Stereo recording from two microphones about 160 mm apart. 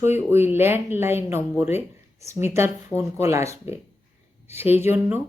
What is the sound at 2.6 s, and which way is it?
Speech, 15° right (ahead or behind).